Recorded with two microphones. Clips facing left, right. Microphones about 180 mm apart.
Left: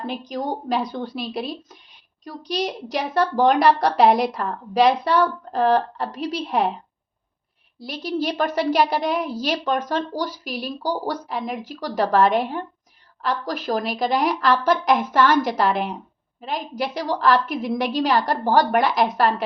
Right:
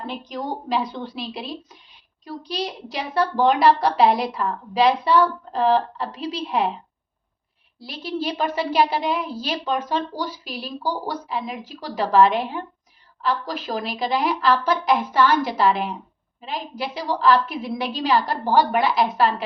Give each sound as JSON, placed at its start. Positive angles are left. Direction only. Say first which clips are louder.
{"t": 0.1, "sound": "a woman's voice", "louder": "left 2 dB", "side_deg": 45}
{"t": 7.8, "sound": "a woman's voice", "louder": "left 3 dB", "side_deg": 40}